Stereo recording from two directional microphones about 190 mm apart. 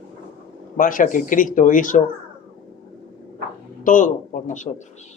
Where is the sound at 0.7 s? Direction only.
45° left (ahead or behind).